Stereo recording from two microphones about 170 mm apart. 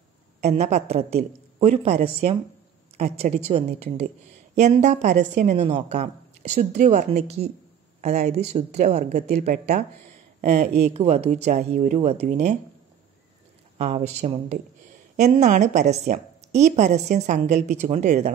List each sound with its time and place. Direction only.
0.4 s a woman's voice: 40° right (ahead or behind)
3.0 s a woman's voice: 40° right (ahead or behind)
13.7 s a woman's voice: 40° right (ahead or behind)